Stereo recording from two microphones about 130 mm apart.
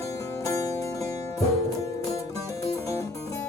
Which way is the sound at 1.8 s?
25° left (ahead or behind).